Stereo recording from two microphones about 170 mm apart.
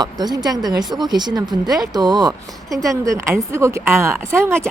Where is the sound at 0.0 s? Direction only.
25° right (ahead or behind).